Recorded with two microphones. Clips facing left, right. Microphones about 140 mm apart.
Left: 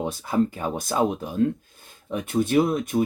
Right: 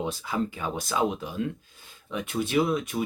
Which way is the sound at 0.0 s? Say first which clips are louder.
Left 5 dB; 45° left (ahead or behind).